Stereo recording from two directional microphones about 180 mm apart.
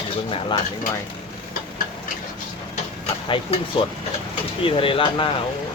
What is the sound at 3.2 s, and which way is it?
Speech, 30° left (ahead or behind).